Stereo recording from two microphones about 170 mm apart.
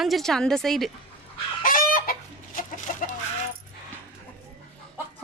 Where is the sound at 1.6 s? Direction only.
55° left (ahead or behind).